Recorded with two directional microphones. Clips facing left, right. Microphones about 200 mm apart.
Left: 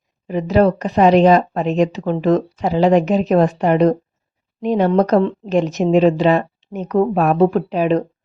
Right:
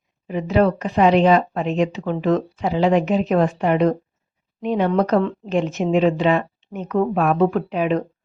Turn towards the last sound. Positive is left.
turn(degrees=35)  # may be behind; listen again after turning